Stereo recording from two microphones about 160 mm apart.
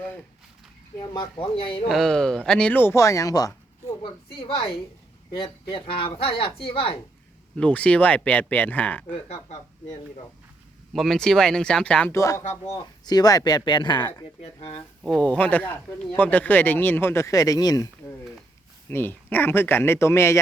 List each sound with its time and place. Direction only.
0.9 s speech: 25° left (ahead or behind)
1.9 s speech: 5° left (ahead or behind); by 7.0 s 35° left (ahead or behind)
7.5 s speech: 10° left (ahead or behind)
10.9 s speech: centre (ahead or behind); by 14.7 s 25° left (ahead or behind)
15.3 s speech: 10° left (ahead or behind)
18.9 s speech: 15° left (ahead or behind)